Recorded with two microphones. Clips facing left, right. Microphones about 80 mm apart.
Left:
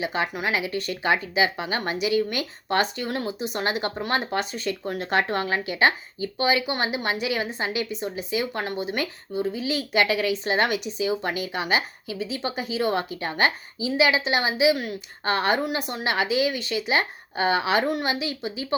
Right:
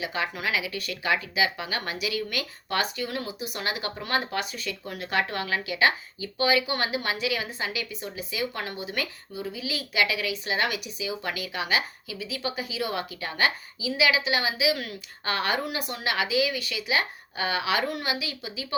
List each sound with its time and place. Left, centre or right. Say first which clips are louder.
0.0 s speech: left 3 dB; left